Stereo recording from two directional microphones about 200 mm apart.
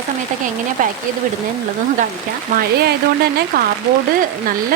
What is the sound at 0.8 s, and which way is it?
Speech, 40° right (ahead or behind).